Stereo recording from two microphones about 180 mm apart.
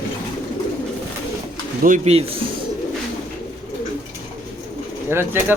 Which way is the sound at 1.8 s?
40° right (ahead or behind).